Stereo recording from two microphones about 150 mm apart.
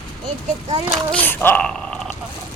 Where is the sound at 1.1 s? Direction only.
15° left (ahead or behind).